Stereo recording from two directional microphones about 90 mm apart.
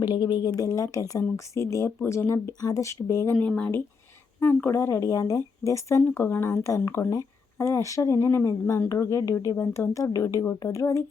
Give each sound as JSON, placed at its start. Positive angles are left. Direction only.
{"t": 0.0, "sound": "speech", "side_deg": 55}
{"t": 2.5, "sound": "speech", "side_deg": 45}
{"t": 3.3, "sound": "speech", "side_deg": 15}
{"t": 6.1, "sound": "speech", "side_deg": 25}